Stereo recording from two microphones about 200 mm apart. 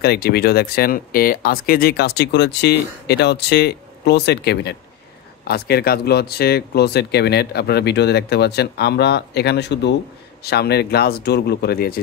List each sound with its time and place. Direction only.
0.0 s speech: 50° left (ahead or behind)